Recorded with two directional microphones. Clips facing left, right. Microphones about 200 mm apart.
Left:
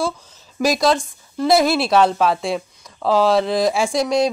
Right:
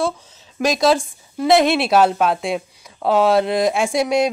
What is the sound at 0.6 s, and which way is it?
A woman's voice, centre (ahead or behind).